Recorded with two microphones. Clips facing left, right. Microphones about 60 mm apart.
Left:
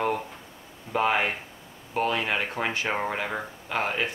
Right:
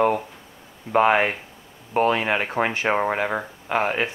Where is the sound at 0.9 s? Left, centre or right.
Right.